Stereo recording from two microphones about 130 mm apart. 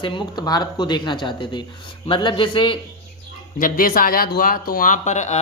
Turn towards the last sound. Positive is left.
turn(degrees=65)  # may be behind; listen again after turning